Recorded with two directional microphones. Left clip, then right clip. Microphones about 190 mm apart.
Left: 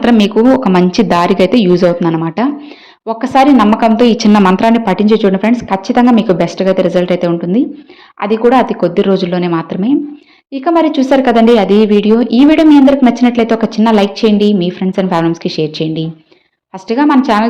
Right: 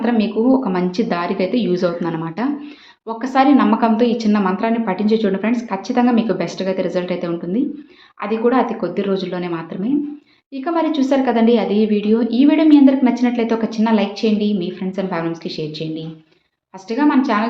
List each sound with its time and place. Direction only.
0.0 s speech: 55° left (ahead or behind)